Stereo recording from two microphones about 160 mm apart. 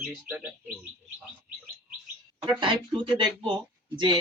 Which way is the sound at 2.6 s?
30° right (ahead or behind).